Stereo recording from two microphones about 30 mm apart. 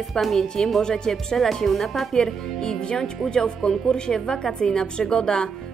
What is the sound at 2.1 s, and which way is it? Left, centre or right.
Speech, left.